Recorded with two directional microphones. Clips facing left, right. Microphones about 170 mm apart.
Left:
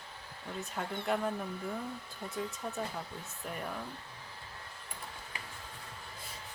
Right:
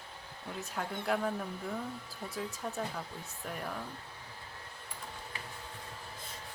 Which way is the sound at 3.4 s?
Centre (ahead or behind).